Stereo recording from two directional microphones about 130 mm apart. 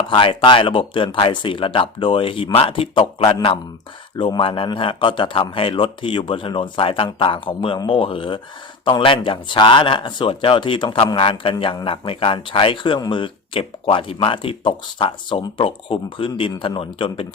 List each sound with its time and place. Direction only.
0.1 s a man's voice: 40° left (ahead or behind)